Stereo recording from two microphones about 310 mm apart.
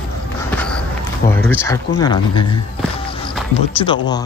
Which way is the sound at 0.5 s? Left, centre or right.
Centre.